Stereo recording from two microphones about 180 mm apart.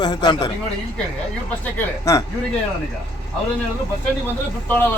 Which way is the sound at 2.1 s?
15° left (ahead or behind).